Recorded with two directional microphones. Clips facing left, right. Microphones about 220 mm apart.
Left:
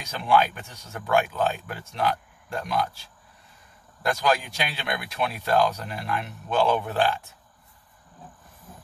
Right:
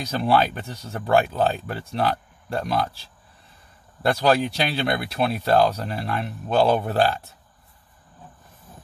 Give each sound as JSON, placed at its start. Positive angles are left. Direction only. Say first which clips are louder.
{"t": 0.0, "sound": "speech", "louder": "right 2 dB", "side_deg": -35}